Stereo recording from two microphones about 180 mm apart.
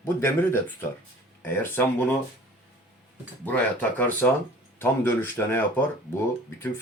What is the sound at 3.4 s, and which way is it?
Speech, 10° left (ahead or behind).